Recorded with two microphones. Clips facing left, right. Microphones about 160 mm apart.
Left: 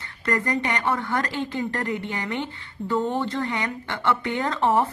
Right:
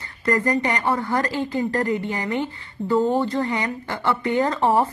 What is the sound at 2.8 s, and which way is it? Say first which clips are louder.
Speech: right 4 dB; 30° right (ahead or behind).